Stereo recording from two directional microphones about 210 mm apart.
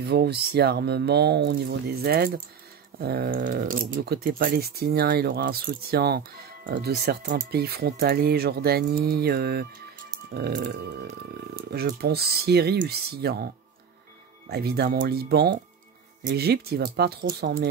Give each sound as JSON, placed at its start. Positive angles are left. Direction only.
{"t": 0.0, "sound": "speech", "side_deg": -50}
{"t": 14.5, "sound": "speech", "side_deg": -50}